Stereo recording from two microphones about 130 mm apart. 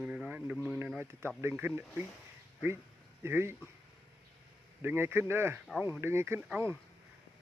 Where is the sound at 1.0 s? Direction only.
20° right (ahead or behind).